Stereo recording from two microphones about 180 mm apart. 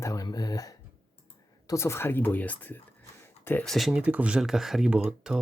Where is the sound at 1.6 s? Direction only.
15° left (ahead or behind).